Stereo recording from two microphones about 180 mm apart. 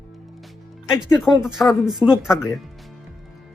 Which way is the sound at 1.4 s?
5° right (ahead or behind).